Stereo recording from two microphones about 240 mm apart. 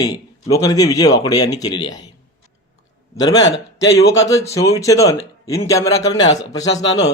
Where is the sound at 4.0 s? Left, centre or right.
Centre.